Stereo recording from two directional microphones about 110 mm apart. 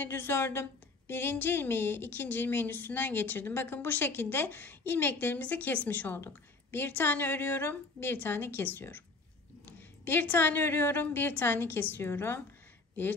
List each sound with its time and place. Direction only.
0.0 s a woman's voice: 20° left (ahead or behind)